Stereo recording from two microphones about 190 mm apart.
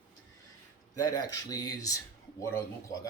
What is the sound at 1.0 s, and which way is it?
Speech, 20° left (ahead or behind).